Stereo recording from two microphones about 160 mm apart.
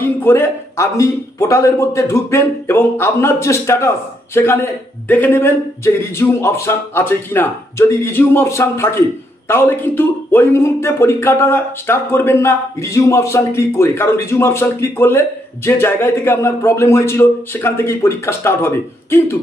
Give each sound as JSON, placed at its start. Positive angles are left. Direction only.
{"t": 0.0, "sound": "a man's voice", "side_deg": 15}